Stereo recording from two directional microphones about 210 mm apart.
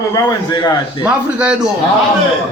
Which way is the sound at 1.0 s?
5° right (ahead or behind).